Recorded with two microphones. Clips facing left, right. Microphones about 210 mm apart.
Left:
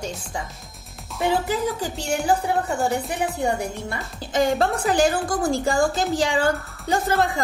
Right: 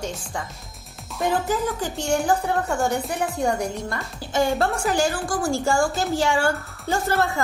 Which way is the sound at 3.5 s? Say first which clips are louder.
Right 1 dB; 5° left (ahead or behind).